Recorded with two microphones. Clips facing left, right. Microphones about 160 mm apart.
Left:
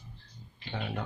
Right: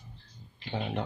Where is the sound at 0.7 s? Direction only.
20° right (ahead or behind).